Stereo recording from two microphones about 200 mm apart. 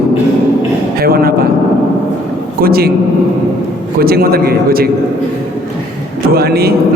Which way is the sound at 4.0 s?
50° right (ahead or behind).